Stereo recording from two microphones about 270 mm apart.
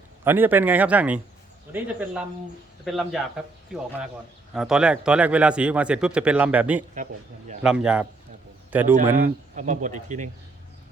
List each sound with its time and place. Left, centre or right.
0.3 s a man's voice: centre
4.5 s a man's voice: centre
6.9 s speech: right
7.6 s a man's voice: centre
9.1 s speech: right